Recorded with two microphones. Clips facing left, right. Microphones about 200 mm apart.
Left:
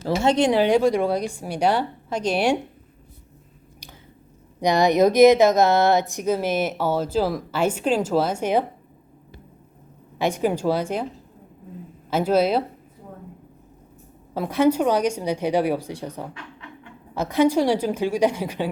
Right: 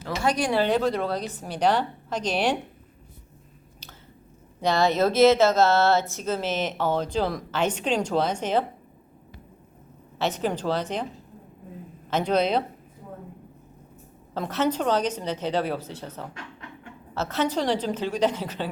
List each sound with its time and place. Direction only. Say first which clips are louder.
0.0 s speech: left 6 dB; 25° left (ahead or behind)
0.6 s speech: left 5 dB; 10° left (ahead or behind)
3.8 s squish: left 3 dB; 15° left (ahead or behind)
4.6 s speech: left 4 dB; 15° left (ahead or behind)
10.2 s speech: left 4 dB; 10° left (ahead or behind)
12.1 s speech: left 3 dB; 5° left (ahead or behind)
14.3 s speech: left 6 dB; 10° left (ahead or behind)
16.3 s a sound: left 1 dB; 45° right (ahead or behind)
17.2 s speech: left 7 dB; 15° left (ahead or behind)